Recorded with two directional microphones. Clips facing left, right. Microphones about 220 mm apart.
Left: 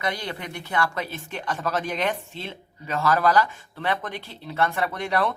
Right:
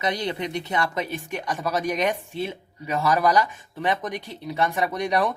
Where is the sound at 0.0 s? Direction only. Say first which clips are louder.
Right 4 dB; 20° right (ahead or behind).